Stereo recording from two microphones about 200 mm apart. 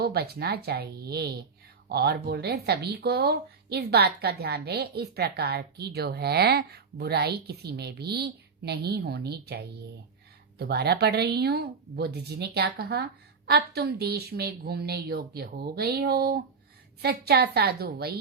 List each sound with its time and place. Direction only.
0.0 s speech: 50° right (ahead or behind)